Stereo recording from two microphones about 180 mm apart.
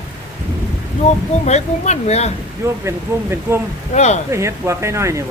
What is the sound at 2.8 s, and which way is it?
Speech, 15° right (ahead or behind).